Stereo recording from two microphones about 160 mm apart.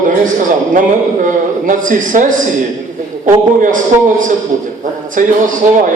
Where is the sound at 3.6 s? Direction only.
55° right (ahead or behind).